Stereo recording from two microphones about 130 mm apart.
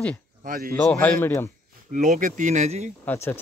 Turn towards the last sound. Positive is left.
turn(degrees=20)  # may be behind; listen again after turning